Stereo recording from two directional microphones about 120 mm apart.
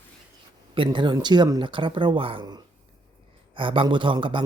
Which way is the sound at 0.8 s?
40° right (ahead or behind).